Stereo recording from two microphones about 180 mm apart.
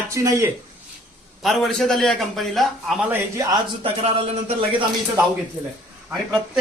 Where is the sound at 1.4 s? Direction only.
Centre (ahead or behind).